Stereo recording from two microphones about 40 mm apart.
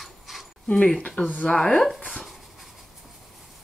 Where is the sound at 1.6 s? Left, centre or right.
Centre.